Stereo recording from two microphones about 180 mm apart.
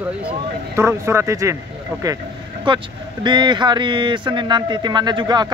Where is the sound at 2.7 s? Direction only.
25° right (ahead or behind).